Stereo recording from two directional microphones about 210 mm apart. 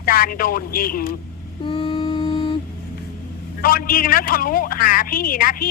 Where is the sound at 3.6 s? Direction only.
45° left (ahead or behind).